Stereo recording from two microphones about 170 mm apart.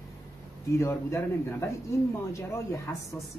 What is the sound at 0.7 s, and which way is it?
Speech, 15° left (ahead or behind).